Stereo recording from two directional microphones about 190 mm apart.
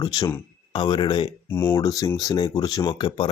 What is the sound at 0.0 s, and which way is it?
Speech, 20° left (ahead or behind).